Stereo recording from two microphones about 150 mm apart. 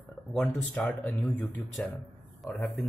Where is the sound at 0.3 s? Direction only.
5° left (ahead or behind).